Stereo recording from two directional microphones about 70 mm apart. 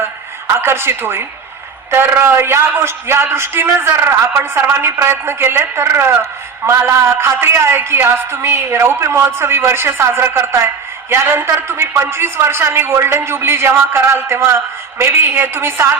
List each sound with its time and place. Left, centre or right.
0.6 s a woman's voice: right